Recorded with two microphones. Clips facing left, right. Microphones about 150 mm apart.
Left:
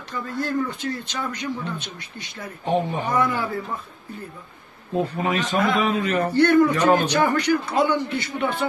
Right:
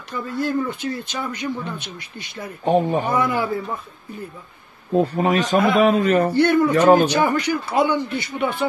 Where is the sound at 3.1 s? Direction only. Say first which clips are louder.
Right 2 dB; 10° right (ahead or behind).